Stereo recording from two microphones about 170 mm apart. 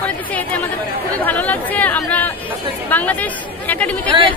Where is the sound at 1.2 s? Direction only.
10° left (ahead or behind).